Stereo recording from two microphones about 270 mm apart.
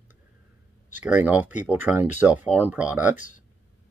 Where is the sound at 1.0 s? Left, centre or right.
Centre.